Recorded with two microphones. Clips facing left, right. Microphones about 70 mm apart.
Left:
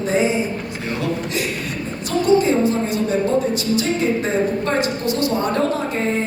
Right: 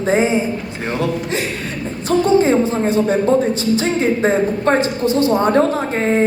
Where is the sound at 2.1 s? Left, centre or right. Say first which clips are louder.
Right 3 dB; right.